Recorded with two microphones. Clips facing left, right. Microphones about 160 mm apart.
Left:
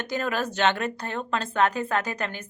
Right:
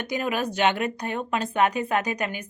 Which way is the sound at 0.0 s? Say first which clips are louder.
Right 1 dB; 10° right (ahead or behind).